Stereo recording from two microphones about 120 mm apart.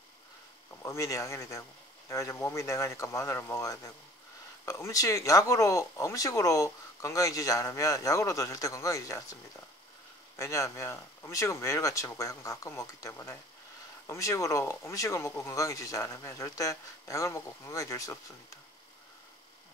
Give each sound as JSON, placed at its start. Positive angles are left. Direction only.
{"t": 0.8, "sound": "speech", "side_deg": 25}